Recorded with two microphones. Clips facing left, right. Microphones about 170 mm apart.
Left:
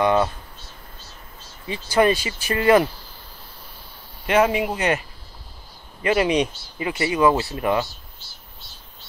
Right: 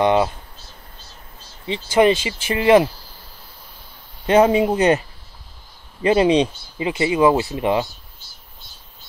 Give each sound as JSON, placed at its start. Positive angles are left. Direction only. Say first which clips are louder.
{"t": 1.7, "sound": "speech", "louder": "right 3 dB", "side_deg": -20}
{"t": 4.3, "sound": "speech", "louder": "right 5 dB", "side_deg": -30}
{"t": 6.0, "sound": "speech", "louder": "right 4 dB", "side_deg": -25}